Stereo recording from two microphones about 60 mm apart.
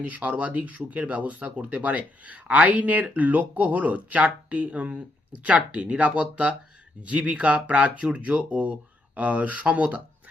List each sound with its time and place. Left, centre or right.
0.0 s speech: right